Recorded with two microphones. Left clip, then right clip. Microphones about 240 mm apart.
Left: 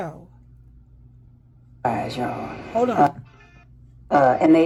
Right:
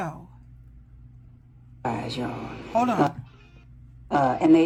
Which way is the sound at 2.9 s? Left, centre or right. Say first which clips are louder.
Left 6 dB; left.